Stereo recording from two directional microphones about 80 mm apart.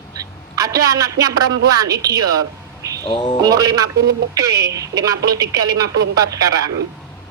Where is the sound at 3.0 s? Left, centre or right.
Left.